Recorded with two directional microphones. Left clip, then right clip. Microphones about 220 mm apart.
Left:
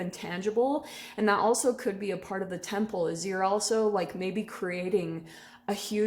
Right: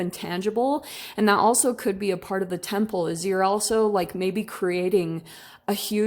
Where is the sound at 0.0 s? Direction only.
40° right (ahead or behind).